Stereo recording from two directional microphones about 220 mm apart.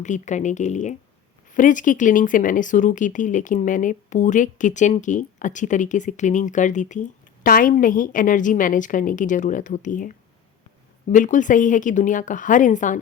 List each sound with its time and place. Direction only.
0.0 s a woman's voice: 35° left (ahead or behind)